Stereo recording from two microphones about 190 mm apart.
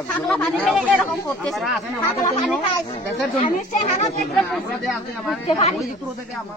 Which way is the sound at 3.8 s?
40° left (ahead or behind).